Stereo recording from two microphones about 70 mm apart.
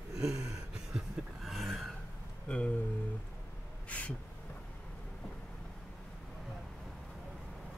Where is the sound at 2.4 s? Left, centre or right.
Centre.